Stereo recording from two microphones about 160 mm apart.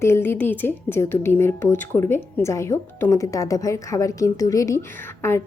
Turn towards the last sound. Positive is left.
turn(degrees=15)  # may be behind; listen again after turning